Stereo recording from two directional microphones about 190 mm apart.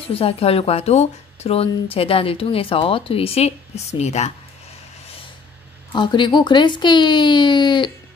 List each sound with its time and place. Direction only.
0.1 s speech: 30° left (ahead or behind)
5.9 s speech: 25° left (ahead or behind)